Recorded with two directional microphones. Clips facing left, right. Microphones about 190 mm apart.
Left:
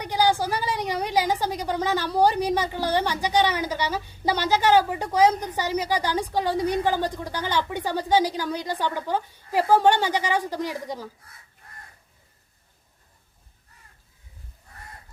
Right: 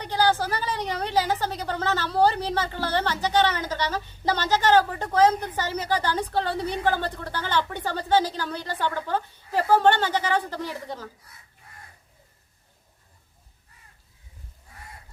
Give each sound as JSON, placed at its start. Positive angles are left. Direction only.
{"t": 0.0, "sound": "a woman's voice", "side_deg": 15}